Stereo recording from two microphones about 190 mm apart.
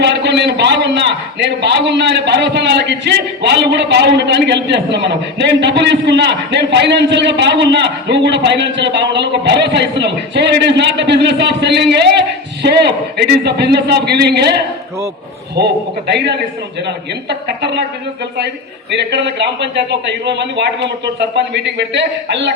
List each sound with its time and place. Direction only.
0.0 s a man's voice: 65° right (ahead or behind)
18.9 s a man's voice: 65° right (ahead or behind)